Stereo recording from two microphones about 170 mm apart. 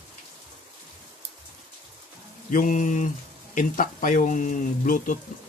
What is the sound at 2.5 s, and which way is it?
Speech, 50° left (ahead or behind).